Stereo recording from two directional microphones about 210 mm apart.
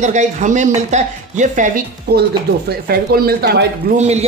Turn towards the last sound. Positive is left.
turn(degrees=-30)  # may be behind; listen again after turning